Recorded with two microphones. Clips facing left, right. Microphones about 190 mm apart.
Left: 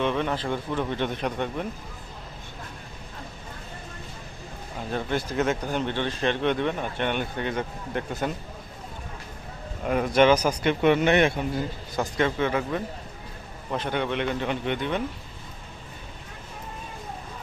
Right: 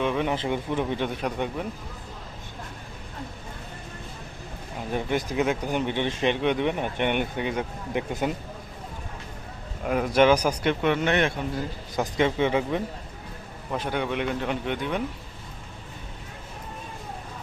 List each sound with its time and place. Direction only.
0.0 s speech: 10° right (ahead or behind)
4.9 s speech: 15° right (ahead or behind)
9.8 s a man's voice: centre (ahead or behind)
10.8 s speech: 15° left (ahead or behind)
11.9 s speech: 15° right (ahead or behind)
13.7 s a man's voice: 5° right (ahead or behind)